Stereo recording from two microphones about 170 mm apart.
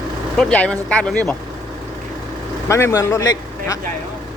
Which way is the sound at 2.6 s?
15° left (ahead or behind).